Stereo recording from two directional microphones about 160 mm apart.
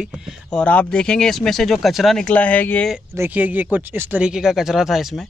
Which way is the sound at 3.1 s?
15° right (ahead or behind).